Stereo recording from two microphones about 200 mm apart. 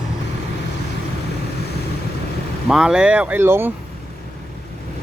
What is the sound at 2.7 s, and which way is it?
Speech, 5° right (ahead or behind).